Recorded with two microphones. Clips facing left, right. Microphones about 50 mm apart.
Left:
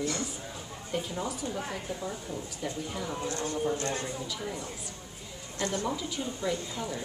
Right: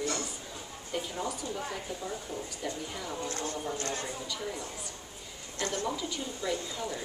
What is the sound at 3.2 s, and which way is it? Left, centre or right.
Speech, left.